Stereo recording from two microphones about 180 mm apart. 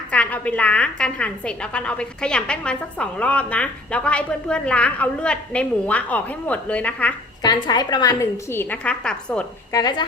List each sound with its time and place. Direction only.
0.1 s a woman's voice: 5° left (ahead or behind)
7.4 s a woman's voice: 20° left (ahead or behind); by 9.5 s 5° left (ahead or behind)
9.7 s speech: 25° left (ahead or behind)